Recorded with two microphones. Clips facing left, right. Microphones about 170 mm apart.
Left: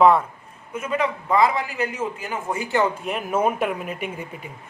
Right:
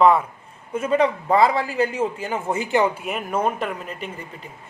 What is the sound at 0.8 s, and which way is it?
A man's voice, 30° right (ahead or behind).